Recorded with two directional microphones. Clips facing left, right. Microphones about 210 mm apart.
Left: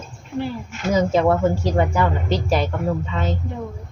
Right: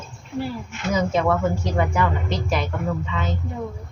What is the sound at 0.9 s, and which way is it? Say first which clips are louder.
A woman's voice: left 4 dB; 35° left (ahead or behind).